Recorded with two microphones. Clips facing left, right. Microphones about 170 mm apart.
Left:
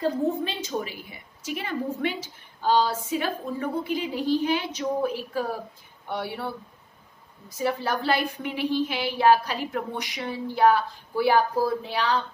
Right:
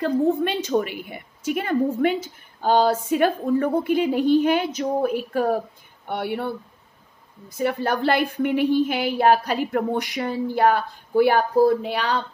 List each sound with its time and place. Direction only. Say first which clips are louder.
0.0 s a woman's voice: right 5 dB; 65° right (ahead or behind)
7.5 s a woman's voice: right 4 dB; 55° right (ahead or behind)